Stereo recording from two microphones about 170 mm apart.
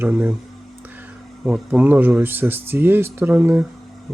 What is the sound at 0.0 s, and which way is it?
Speech, 10° right (ahead or behind).